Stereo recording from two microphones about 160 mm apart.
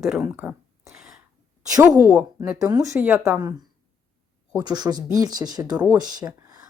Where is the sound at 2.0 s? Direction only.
10° right (ahead or behind).